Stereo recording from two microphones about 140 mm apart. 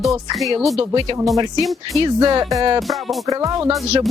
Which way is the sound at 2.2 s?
30° right (ahead or behind).